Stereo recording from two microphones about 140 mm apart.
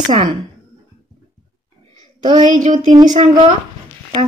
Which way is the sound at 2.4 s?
65° right (ahead or behind).